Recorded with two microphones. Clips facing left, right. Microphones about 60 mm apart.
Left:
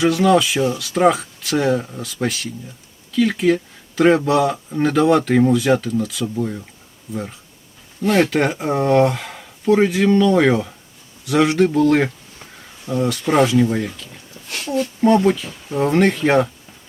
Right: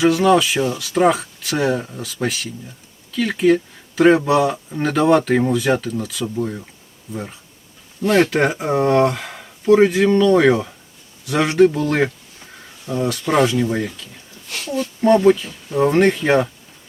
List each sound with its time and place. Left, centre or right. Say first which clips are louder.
0.0 s speech: right 1 dB; centre
11.9 s speech: left 3 dB; centre
14.8 s speech: even; right
15.7 s speech: right 1 dB; centre